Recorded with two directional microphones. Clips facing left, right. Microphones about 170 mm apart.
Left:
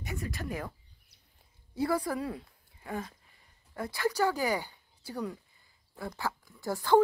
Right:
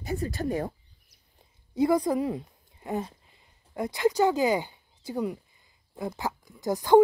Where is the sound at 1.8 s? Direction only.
15° right (ahead or behind).